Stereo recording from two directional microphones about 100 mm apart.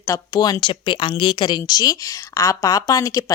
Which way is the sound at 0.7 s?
55° left (ahead or behind).